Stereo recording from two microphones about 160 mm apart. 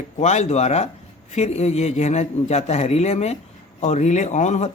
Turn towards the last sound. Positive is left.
turn(degrees=45)  # may be behind; listen again after turning